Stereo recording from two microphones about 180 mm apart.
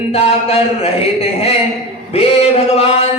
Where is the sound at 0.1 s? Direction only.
35° left (ahead or behind).